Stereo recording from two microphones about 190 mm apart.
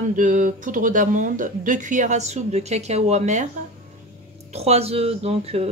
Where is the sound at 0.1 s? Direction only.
40° right (ahead or behind).